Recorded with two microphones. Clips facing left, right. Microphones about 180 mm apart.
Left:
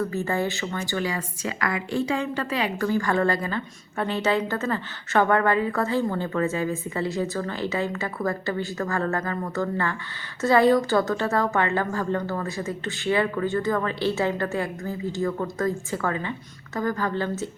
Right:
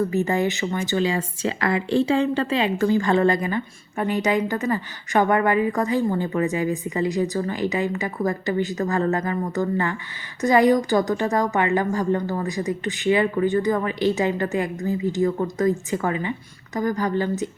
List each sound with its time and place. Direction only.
0.1 s speech: 20° right (ahead or behind)